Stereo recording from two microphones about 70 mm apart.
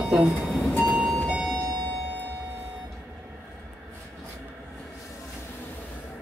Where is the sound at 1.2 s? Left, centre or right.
Centre.